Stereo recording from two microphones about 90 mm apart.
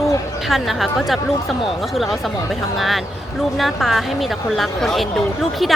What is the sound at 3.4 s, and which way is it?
Speech, centre (ahead or behind).